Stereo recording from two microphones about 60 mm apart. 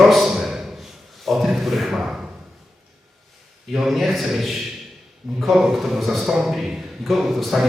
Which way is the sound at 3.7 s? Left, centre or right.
Centre.